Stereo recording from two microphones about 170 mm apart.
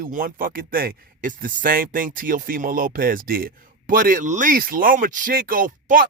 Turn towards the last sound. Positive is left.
turn(degrees=-55)  # may be behind; listen again after turning